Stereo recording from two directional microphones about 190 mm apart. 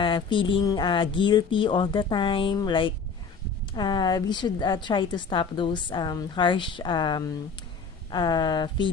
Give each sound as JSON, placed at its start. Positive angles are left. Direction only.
{"t": 0.0, "sound": "a woman's voice", "side_deg": 25}